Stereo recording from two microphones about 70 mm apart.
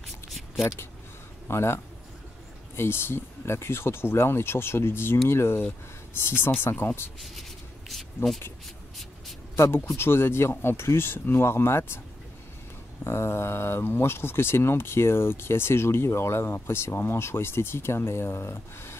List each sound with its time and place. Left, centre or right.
1.5 s speech: left
7.9 s a sound: centre
9.9 s speech: left
13.0 s speech: left